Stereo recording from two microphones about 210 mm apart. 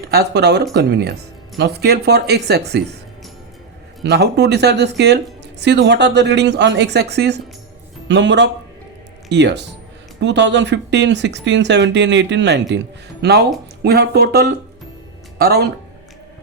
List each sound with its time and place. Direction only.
0.1 s speech: 50° right (ahead or behind)
4.0 s a man's voice: 55° right (ahead or behind)